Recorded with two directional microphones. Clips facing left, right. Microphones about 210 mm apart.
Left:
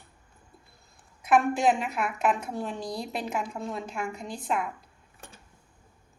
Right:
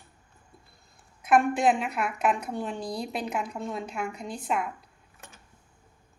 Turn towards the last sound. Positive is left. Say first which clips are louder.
# left 2 dB
turn(degrees=30)  # may be behind; listen again after turning